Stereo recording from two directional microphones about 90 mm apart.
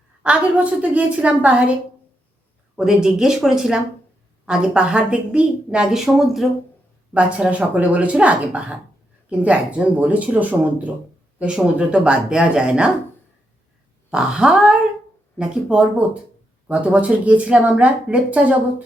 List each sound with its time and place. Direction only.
0.2 s a woman's voice: 15° right (ahead or behind)
2.7 s a woman's voice: 5° right (ahead or behind)
7.1 s a woman's voice: 15° right (ahead or behind)
14.1 s a sound: 10° right (ahead or behind)
15.4 s a woman's voice: 10° right (ahead or behind)